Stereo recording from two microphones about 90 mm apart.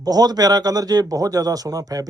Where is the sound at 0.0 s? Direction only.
45° right (ahead or behind).